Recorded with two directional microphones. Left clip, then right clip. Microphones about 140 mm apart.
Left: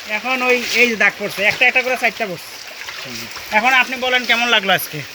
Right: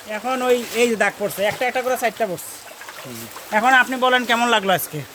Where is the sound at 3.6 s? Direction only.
55° right (ahead or behind).